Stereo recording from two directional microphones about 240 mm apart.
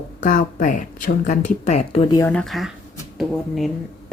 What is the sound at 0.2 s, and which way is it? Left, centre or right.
Speech, left.